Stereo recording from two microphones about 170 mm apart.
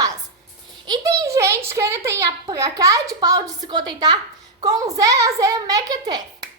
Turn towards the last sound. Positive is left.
turn(degrees=-25)  # may be behind; listen again after turning